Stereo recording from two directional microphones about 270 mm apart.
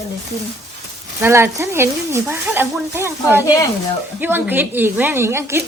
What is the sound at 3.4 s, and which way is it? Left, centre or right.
Speech, centre.